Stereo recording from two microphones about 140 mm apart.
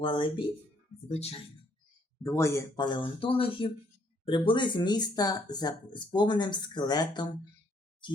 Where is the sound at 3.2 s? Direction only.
40° left (ahead or behind).